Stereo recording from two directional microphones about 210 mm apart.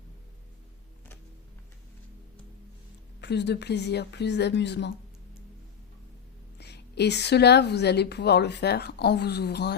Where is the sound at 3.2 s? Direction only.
55° left (ahead or behind).